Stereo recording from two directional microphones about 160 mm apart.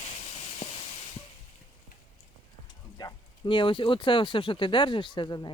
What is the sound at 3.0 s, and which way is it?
Speech, 30° left (ahead or behind).